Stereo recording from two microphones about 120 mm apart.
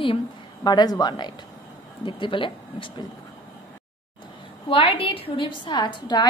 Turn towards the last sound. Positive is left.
turn(degrees=35)  # may be behind; listen again after turning